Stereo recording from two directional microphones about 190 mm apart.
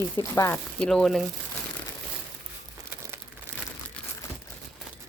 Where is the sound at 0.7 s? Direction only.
5° left (ahead or behind).